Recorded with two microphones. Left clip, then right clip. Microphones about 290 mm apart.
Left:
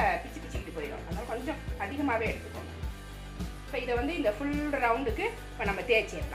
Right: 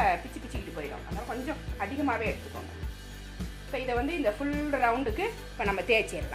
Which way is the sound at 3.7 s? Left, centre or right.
Right.